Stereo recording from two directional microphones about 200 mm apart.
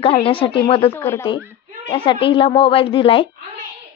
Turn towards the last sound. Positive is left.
turn(degrees=25)  # may be behind; listen again after turning